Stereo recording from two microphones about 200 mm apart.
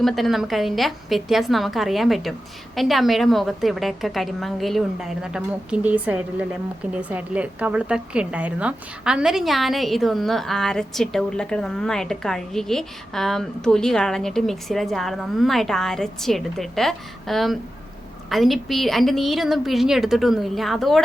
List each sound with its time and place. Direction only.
0.0 s a woman's voice: centre (ahead or behind)